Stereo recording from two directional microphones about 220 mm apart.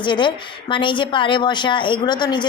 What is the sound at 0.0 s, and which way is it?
A woman's voice, 20° left (ahead or behind).